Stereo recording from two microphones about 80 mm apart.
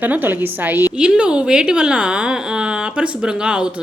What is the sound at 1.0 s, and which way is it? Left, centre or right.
A woman's voice, centre.